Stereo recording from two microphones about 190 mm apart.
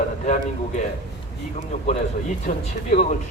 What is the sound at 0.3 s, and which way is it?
Speech, 40° left (ahead or behind).